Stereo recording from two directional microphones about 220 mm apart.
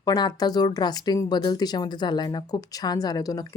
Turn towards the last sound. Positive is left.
turn(degrees=15)  # may be behind; listen again after turning